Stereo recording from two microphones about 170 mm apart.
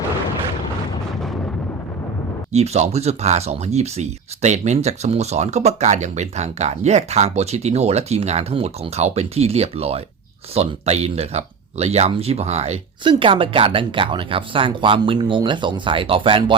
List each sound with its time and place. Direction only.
2.5 s speech: 40° right (ahead or behind)